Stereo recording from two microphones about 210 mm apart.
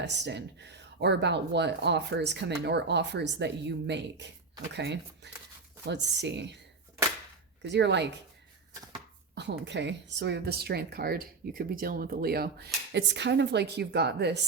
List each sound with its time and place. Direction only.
0.0 s speech: 55° right (ahead or behind)
7.6 s speech: 55° right (ahead or behind)
9.3 s speech: 55° right (ahead or behind)